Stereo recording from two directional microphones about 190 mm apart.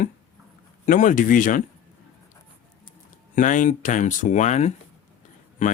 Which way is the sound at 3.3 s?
40° left (ahead or behind).